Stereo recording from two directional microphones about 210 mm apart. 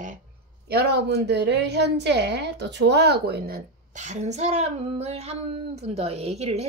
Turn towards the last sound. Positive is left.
turn(degrees=-30)  # may be behind; listen again after turning